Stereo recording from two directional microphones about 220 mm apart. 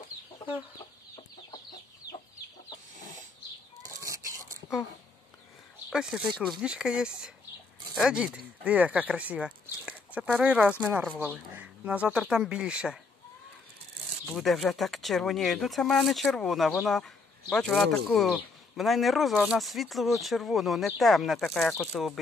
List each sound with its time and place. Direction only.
3.0 s chicken: 35° right (ahead or behind)
5.9 s speech: 5° right (ahead or behind)
14.3 s speech: centre (ahead or behind)